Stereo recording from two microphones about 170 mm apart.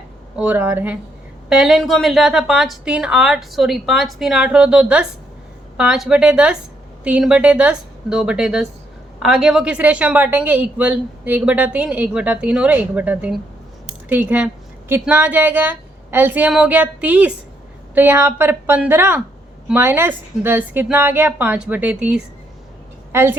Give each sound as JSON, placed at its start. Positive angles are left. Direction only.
{"t": 0.3, "sound": "a woman's voice", "side_deg": -10}